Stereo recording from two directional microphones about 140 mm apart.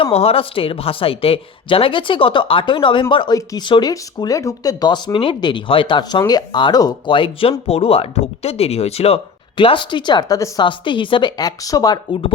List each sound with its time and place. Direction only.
0.0 s speech: 45° left (ahead or behind); by 10.7 s 25° left (ahead or behind)
10.7 s speech: 35° left (ahead or behind)